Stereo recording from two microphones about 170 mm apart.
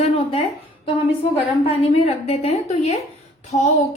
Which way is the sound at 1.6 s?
35° left (ahead or behind).